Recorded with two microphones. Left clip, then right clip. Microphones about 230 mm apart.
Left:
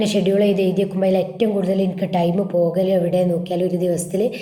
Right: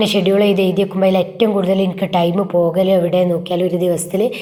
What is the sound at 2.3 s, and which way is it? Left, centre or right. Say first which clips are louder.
A woman's voice: right 3 dB; centre.